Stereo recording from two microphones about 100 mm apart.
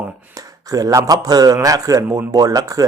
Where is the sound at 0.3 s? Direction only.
35° right (ahead or behind).